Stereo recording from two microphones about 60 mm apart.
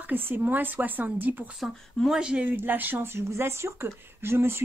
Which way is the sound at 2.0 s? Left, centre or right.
Centre.